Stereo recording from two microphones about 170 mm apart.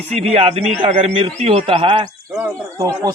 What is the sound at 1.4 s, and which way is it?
Speech, 35° right (ahead or behind).